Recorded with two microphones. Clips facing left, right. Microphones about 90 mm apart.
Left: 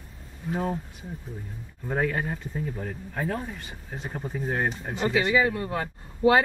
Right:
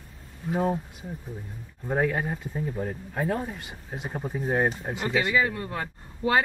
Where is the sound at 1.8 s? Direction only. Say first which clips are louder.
Right 1 dB; 10° right (ahead or behind).